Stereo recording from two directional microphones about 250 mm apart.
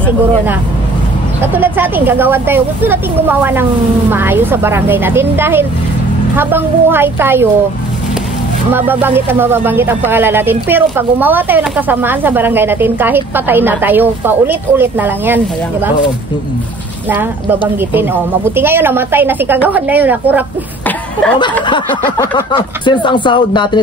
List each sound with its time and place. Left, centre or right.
1.4 s speech: centre
8.7 s speech: centre
17.1 s speech: centre
20.8 s a sound: centre
21.6 s speech: centre